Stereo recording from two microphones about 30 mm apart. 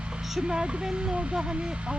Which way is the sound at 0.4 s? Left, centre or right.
Right.